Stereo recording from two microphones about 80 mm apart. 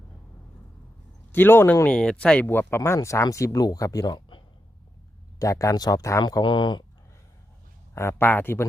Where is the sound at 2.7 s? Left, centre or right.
Left.